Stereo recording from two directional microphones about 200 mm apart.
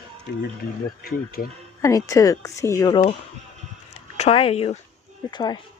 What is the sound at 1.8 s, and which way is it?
Speech, 15° left (ahead or behind).